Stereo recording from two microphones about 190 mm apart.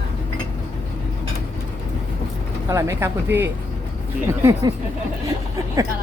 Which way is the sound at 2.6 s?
15° right (ahead or behind).